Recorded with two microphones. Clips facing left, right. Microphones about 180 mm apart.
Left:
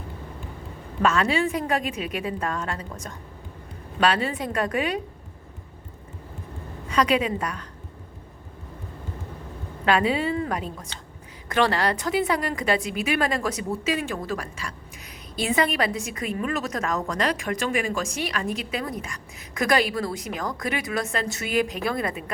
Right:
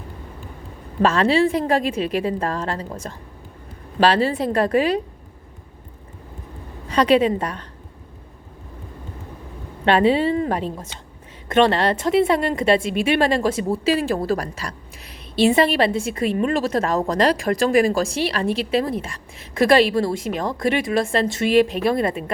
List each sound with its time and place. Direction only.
1.0 s a woman's voice: 30° right (ahead or behind)
6.8 s a woman's voice: 30° right (ahead or behind)
9.8 s a woman's voice: 30° right (ahead or behind)